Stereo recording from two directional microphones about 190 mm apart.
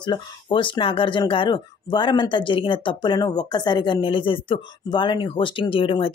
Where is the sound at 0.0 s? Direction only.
25° left (ahead or behind).